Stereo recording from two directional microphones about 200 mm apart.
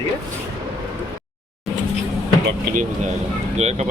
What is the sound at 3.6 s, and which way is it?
Speech, 35° right (ahead or behind).